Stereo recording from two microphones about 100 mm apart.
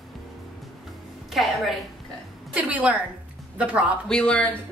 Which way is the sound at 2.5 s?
15° right (ahead or behind).